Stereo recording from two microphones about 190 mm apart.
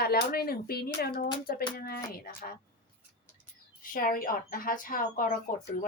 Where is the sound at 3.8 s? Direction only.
50° left (ahead or behind).